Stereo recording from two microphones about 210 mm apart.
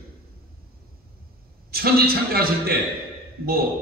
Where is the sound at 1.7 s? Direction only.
45° right (ahead or behind).